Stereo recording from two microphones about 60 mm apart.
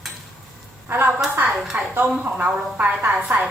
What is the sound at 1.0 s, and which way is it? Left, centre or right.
A woman's voice, right.